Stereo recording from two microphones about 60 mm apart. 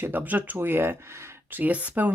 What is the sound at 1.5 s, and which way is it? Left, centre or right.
Speech, right.